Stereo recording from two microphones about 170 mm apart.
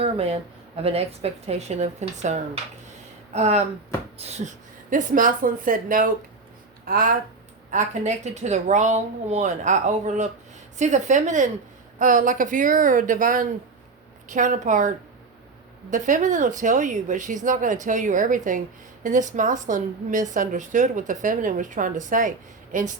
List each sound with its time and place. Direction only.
0.0 s a woman's voice: 35° right (ahead or behind); by 7.2 s 60° right (ahead or behind)
7.7 s a woman's voice: 45° right (ahead or behind)